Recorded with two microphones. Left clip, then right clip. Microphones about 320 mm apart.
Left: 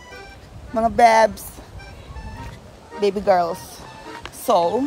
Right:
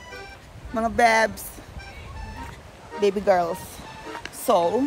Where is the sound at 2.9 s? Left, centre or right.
Centre.